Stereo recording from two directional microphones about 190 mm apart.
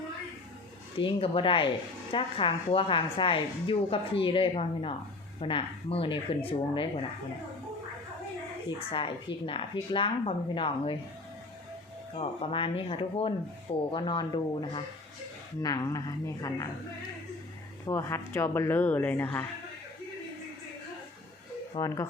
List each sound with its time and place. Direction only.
0.9 s a woman's voice: 30° left (ahead or behind)
8.9 s a woman's voice: 30° left (ahead or behind)
12.1 s a woman's voice: 30° left (ahead or behind)
17.8 s speech: 15° left (ahead or behind)
21.8 s speech: 20° left (ahead or behind)